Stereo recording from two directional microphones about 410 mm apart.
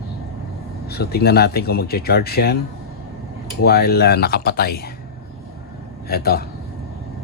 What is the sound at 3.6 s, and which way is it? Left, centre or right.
Speech, left.